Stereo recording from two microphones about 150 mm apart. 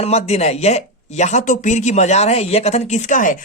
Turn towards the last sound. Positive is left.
turn(degrees=60)  # may be behind; listen again after turning